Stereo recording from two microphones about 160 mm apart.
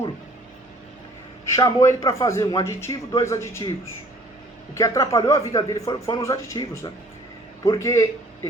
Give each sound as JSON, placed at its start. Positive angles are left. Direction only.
{"t": 1.5, "sound": "a man's voice", "side_deg": 20}